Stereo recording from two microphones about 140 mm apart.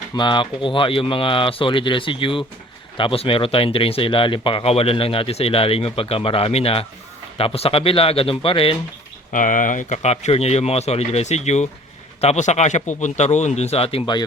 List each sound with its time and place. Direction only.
0.1 s speech: 35° left (ahead or behind)
9.3 s speech: 65° left (ahead or behind); by 14.3 s 30° left (ahead or behind)